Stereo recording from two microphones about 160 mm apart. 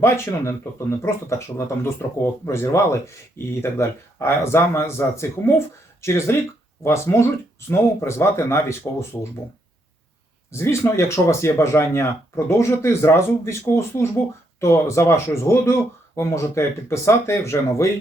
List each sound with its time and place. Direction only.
0.0 s speech: 15° left (ahead or behind)
10.5 s speech: 15° left (ahead or behind)